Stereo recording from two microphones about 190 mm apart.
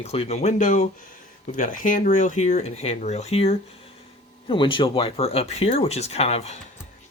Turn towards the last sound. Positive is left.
turn(degrees=35)  # may be behind; listen again after turning